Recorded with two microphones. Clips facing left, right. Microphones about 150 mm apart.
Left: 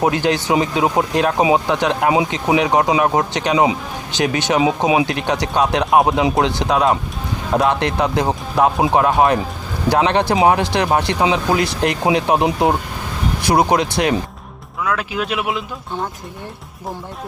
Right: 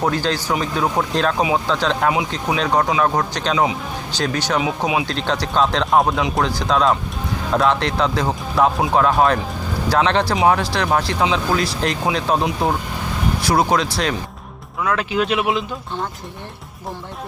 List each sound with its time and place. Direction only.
0.0 s speech: 15° left (ahead or behind)
14.8 s speech: 5° left (ahead or behind)